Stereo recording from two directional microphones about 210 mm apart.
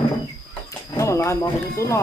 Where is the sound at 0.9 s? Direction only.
15° left (ahead or behind).